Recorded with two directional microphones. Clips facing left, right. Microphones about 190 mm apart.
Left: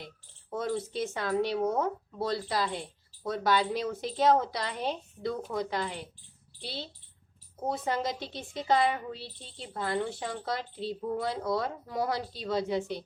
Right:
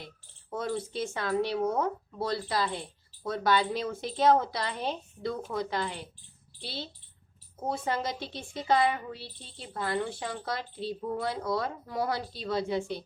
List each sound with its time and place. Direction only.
0.5 s a woman's voice: 20° left (ahead or behind)